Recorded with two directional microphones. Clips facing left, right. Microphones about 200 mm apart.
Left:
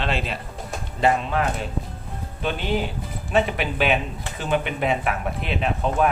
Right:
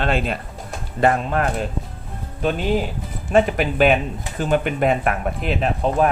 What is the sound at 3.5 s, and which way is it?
Speech, 45° right (ahead or behind).